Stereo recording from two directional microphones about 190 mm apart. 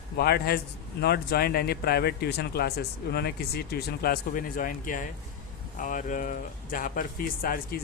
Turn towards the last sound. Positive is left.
turn(degrees=50)  # may be behind; listen again after turning